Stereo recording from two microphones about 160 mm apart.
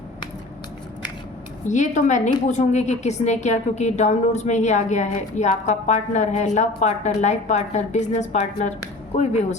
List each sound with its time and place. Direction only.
1.6 s a woman's voice: 50° left (ahead or behind)